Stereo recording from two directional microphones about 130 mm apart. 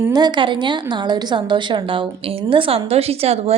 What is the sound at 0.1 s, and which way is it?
A woman's voice, 35° right (ahead or behind).